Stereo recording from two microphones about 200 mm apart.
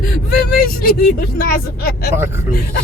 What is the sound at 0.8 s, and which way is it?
Speech, 45° left (ahead or behind).